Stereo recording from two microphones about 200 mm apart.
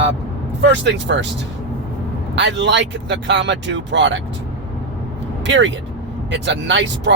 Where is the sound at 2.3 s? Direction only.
65° right (ahead or behind).